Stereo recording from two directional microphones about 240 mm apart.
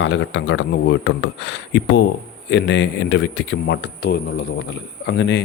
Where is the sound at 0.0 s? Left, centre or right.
Left.